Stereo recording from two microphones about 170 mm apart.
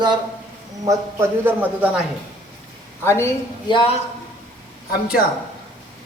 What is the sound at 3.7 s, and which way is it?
Speech, 30° left (ahead or behind).